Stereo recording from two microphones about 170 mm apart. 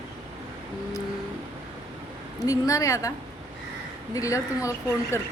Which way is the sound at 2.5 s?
20° left (ahead or behind).